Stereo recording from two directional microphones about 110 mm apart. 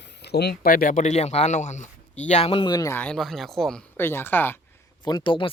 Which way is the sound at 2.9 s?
15° left (ahead or behind).